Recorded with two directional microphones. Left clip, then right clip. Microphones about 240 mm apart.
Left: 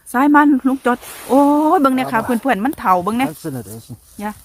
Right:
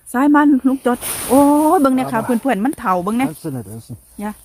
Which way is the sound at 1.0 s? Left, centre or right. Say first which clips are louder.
Right 7 dB; right.